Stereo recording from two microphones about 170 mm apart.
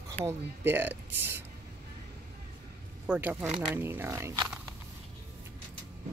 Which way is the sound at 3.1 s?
10° right (ahead or behind).